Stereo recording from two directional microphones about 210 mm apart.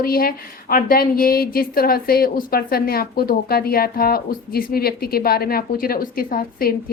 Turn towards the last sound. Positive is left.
turn(degrees=45)  # may be behind; listen again after turning